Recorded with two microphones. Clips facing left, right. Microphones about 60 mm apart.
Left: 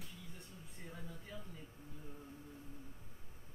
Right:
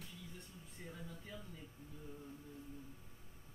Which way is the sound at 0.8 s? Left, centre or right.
Centre.